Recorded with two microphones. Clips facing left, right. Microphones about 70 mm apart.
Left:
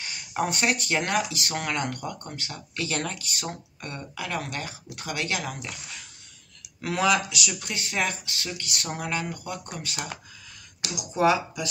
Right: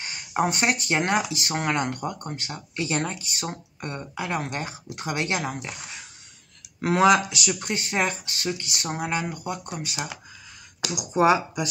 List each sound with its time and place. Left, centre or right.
0.0 s speech: right
5.8 s speech: right
7.6 s speech: right